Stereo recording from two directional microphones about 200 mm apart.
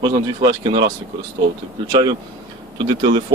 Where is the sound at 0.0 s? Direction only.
20° right (ahead or behind).